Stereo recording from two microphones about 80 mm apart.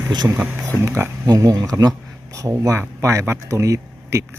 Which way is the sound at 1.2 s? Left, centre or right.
Right.